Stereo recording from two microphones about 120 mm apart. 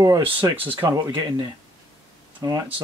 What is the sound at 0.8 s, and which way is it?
Speech, 30° right (ahead or behind).